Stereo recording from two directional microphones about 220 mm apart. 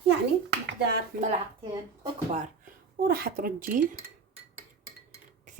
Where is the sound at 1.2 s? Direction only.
25° right (ahead or behind).